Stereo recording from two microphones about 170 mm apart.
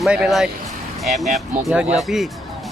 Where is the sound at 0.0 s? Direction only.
5° right (ahead or behind).